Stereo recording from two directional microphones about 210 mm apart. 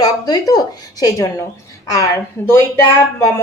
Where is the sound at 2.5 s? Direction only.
10° left (ahead or behind).